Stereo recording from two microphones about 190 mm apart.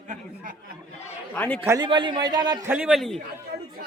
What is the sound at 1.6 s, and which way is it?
Speech, 15° right (ahead or behind).